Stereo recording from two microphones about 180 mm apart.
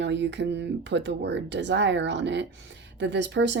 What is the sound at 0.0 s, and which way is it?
Speech, 75° right (ahead or behind).